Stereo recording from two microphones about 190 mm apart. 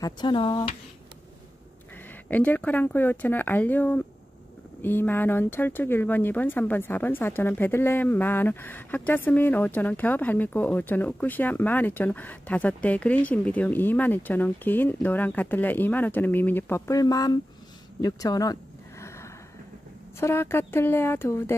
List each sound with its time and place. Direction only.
0.0 s speech: 25° left (ahead or behind)
2.2 s speech: 10° left (ahead or behind)
18.0 s a sound: 20° left (ahead or behind)
20.2 s speech: 15° left (ahead or behind)